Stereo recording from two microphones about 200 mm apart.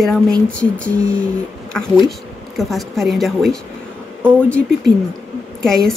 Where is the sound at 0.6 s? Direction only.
5° left (ahead or behind).